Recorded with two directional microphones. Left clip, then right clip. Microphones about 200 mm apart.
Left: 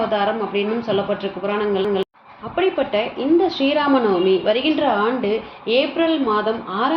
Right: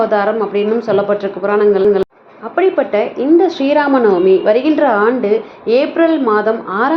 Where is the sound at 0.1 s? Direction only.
Centre (ahead or behind).